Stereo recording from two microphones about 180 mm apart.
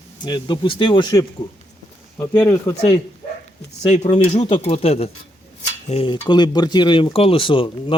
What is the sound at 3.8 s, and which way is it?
Speech, 40° left (ahead or behind).